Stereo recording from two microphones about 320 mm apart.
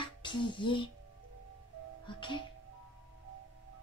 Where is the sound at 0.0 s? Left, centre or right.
Centre.